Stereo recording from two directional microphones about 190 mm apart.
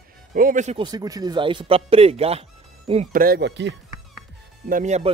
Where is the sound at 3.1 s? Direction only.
50° right (ahead or behind).